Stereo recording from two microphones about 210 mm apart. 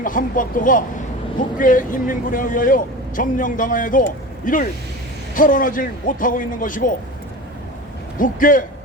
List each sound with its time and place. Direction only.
0.0 s speech: 40° left (ahead or behind)
8.2 s speech: 40° left (ahead or behind)